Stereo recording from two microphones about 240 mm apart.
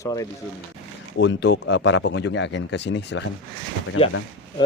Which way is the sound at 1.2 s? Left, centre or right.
Left.